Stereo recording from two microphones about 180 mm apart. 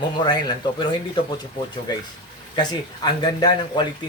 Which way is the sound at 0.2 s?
25° left (ahead or behind).